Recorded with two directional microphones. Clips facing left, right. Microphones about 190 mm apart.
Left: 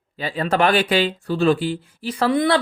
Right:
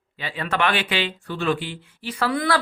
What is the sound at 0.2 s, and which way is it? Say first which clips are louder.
Speech: left 5 dB; 40° left (ahead or behind).